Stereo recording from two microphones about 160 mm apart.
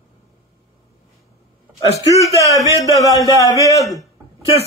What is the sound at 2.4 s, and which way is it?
Speech, 20° right (ahead or behind).